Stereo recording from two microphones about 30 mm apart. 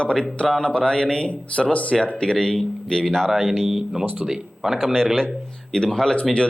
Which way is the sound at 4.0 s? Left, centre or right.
Right.